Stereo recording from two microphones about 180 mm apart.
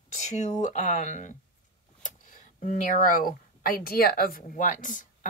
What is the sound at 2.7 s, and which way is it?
Speech, 50° left (ahead or behind).